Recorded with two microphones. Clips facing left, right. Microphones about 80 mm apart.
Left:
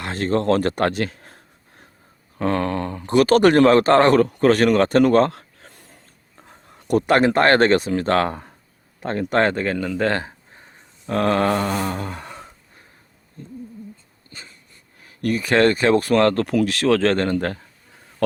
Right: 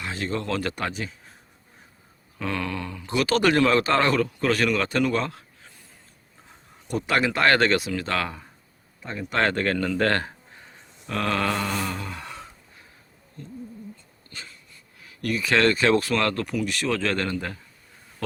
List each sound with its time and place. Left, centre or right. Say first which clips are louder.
0.0 s speech: left 8 dB; left
0.9 s speech: left 9 dB; left
2.4 s speech: left 8 dB; left
9.0 s speech: left 9 dB; left
9.4 s speech: even; centre
11.0 s a sound: left 7 dB; left
14.3 s wheeze: even; left
15.0 s speech: left 5 dB; left